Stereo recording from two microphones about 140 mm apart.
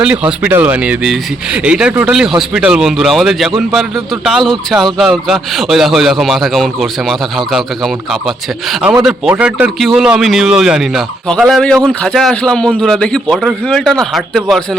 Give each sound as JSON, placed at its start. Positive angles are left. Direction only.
{"t": 0.0, "sound": "speech", "side_deg": -5}
{"t": 8.8, "sound": "speech", "side_deg": -10}